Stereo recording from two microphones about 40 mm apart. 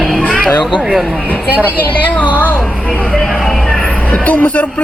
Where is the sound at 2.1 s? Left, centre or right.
Left.